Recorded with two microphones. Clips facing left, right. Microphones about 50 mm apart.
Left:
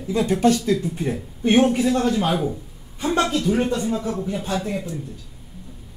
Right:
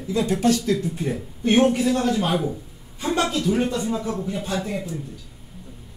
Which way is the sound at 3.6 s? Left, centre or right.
Left.